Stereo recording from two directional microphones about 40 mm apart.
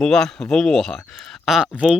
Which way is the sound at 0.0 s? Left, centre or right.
Centre.